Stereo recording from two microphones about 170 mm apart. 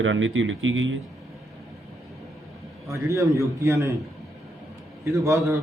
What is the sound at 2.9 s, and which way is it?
A man's voice, 20° right (ahead or behind).